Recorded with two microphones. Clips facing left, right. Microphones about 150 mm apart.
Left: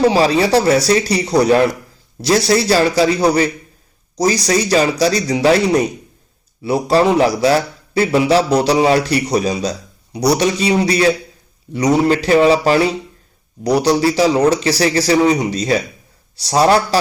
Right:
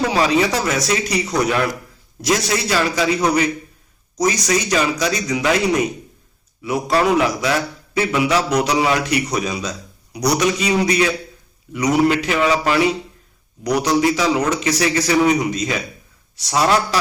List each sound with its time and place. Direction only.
0.0 s a man's voice: 30° left (ahead or behind)